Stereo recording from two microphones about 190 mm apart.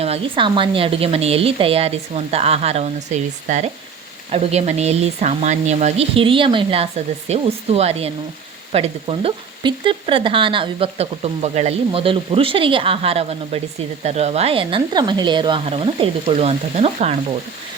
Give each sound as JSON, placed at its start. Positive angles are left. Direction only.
{"t": 0.0, "sound": "speech", "side_deg": -30}